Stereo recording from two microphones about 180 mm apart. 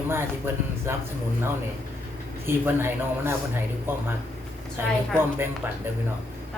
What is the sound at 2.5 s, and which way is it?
A man's voice, 15° right (ahead or behind).